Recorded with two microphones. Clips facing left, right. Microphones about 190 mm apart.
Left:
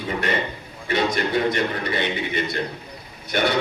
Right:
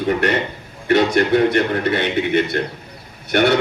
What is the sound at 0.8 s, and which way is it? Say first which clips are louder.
A man's voice: right 7 dB; 65° right (ahead or behind).